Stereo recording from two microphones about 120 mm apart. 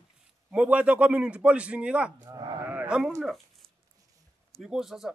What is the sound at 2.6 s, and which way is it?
Speech, 10° right (ahead or behind).